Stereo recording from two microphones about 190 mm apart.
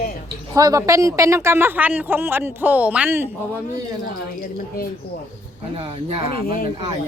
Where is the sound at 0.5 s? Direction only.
20° right (ahead or behind).